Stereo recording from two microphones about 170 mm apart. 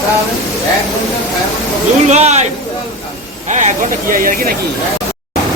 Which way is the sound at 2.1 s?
40° right (ahead or behind).